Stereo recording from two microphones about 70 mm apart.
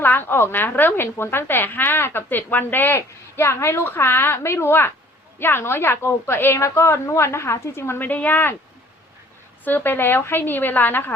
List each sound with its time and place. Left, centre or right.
0.0 s a woman's voice: left
9.6 s a woman's voice: left